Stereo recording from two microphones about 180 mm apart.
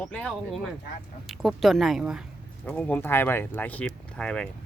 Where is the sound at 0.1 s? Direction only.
Centre (ahead or behind).